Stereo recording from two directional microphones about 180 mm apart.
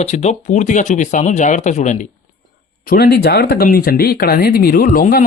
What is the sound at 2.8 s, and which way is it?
Speech, 55° left (ahead or behind).